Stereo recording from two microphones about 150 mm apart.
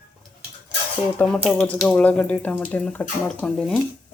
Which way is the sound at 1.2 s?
5° left (ahead or behind).